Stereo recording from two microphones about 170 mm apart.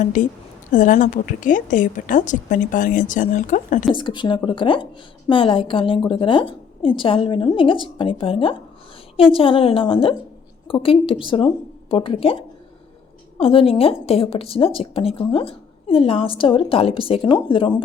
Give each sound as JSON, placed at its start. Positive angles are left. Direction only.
{"t": 0.0, "sound": "a woman's voice", "side_deg": 50}
{"t": 3.9, "sound": "a woman's voice", "side_deg": 30}